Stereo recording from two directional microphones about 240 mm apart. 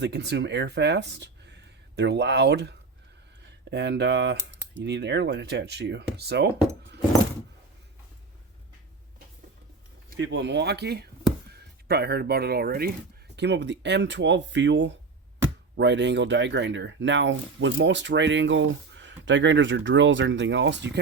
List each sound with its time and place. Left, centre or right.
0.0 s speech: right
10.2 s speech: right